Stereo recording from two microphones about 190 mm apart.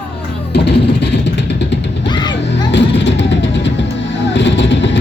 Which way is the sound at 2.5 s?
70° left (ahead or behind).